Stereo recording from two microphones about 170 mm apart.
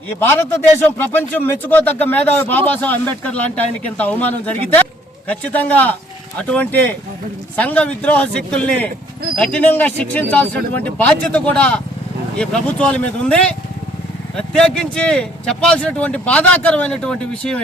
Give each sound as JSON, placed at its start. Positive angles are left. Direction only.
{"t": 0.2, "sound": "speech", "side_deg": 15}